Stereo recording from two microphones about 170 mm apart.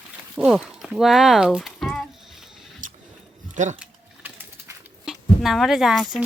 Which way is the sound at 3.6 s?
45° right (ahead or behind).